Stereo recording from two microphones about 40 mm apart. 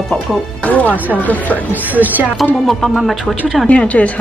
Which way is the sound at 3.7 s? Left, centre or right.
Left.